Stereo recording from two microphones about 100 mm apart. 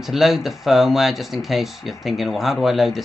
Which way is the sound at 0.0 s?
5° right (ahead or behind).